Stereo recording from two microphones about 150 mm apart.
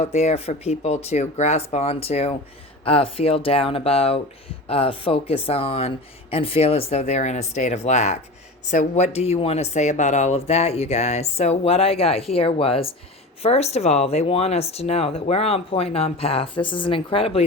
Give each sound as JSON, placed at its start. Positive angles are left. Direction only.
{"t": 0.0, "sound": "speech", "side_deg": 45}